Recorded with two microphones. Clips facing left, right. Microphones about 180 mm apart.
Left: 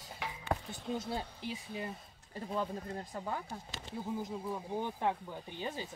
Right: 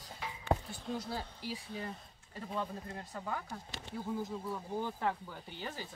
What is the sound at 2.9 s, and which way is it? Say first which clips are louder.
Speech: right 1 dB; 20° left (ahead or behind).